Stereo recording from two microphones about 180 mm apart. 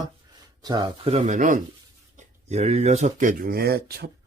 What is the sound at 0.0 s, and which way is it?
Speech, 20° right (ahead or behind).